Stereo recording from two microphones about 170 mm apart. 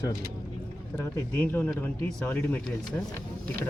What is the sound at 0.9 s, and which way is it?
Speech, 10° left (ahead or behind).